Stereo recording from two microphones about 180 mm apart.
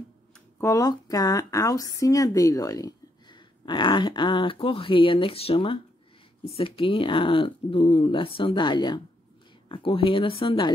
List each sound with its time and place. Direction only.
0.6 s speech: 20° left (ahead or behind)